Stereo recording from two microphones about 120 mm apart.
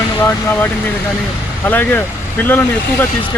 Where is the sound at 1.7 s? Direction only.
15° left (ahead or behind).